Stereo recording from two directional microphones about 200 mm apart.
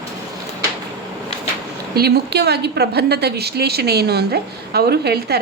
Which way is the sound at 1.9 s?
55° right (ahead or behind).